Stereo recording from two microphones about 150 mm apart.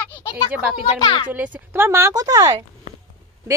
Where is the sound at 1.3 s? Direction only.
10° right (ahead or behind).